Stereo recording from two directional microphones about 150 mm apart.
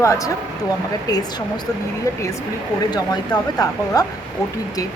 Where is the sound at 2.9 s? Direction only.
25° left (ahead or behind).